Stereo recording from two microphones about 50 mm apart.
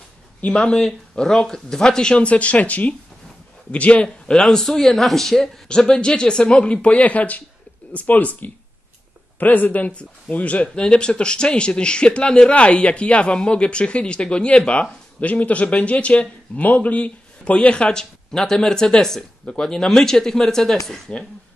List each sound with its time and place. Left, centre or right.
0.4 s a man's voice: centre
4.4 s a man's voice: centre; by 10.7 s left
10.7 s a man's voice: centre
18.3 s speech: centre
21.1 s a man's voice: left